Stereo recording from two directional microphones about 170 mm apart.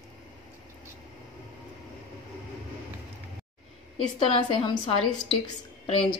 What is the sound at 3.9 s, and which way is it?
A woman's voice, 35° left (ahead or behind).